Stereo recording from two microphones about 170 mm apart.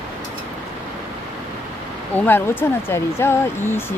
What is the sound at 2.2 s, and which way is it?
Speech, 10° left (ahead or behind).